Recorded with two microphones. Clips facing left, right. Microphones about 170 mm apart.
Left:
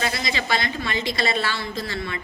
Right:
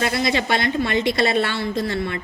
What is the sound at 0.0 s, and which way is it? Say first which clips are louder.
A woman's voice: right 6 dB; 60° right (ahead or behind).